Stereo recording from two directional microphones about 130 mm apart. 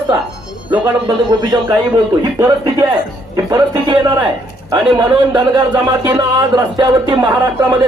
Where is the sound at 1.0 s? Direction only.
30° right (ahead or behind).